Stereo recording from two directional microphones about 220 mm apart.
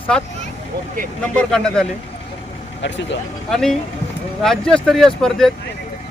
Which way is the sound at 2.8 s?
55° left (ahead or behind).